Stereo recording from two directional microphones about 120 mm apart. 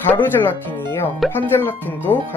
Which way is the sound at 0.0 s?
15° left (ahead or behind).